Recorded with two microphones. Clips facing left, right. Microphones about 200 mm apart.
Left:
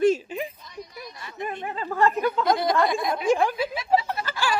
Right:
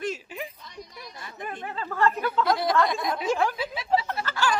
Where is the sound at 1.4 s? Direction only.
15° left (ahead or behind).